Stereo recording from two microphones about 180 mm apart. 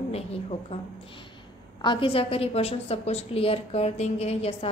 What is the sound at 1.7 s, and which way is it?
A woman's voice, 30° left (ahead or behind).